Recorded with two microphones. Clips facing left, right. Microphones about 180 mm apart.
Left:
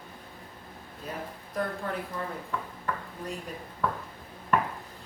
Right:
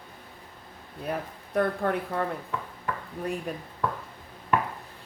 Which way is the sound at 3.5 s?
65° right (ahead or behind).